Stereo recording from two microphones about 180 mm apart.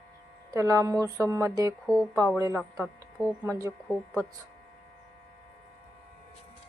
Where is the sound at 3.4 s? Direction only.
15° right (ahead or behind).